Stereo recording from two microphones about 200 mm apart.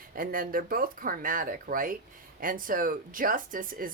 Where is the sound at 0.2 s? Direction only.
45° right (ahead or behind).